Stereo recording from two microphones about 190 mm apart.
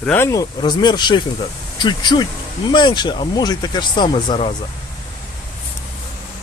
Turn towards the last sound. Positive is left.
turn(degrees=25)  # may be behind; listen again after turning